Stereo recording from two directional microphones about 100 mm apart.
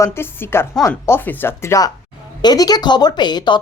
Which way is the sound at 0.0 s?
25° left (ahead or behind).